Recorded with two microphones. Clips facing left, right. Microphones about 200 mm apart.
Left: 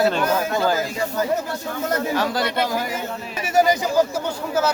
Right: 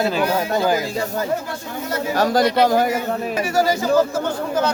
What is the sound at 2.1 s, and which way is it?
Speech, 40° right (ahead or behind).